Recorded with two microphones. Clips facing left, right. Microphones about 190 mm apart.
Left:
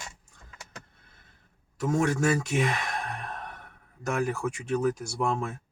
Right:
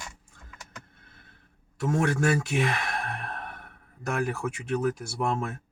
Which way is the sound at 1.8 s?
Centre (ahead or behind).